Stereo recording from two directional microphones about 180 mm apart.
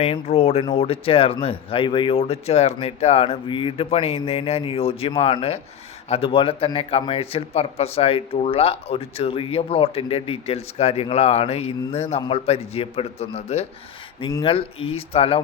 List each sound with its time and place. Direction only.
0.0 s a man's voice: 35° left (ahead or behind)
14.2 s a man's voice: 25° left (ahead or behind)